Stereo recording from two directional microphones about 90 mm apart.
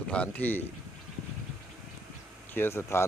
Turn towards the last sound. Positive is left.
turn(degrees=30)  # may be behind; listen again after turning